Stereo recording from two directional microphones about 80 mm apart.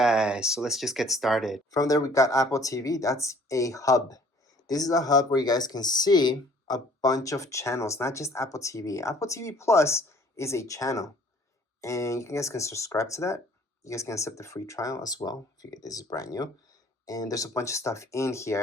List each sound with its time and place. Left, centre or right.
0.0 s speech: centre
1.7 s speech: left